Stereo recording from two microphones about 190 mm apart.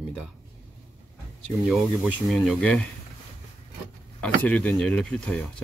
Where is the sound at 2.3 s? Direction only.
Centre (ahead or behind).